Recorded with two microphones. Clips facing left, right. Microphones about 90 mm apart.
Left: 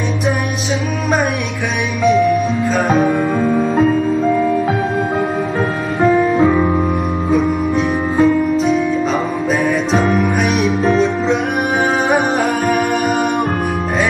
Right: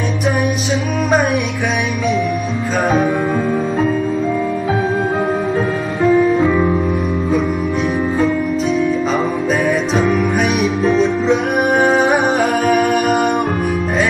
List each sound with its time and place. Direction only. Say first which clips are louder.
7.3 s music: left 4 dB; centre (ahead or behind)
10.6 s music: left 2 dB; centre (ahead or behind)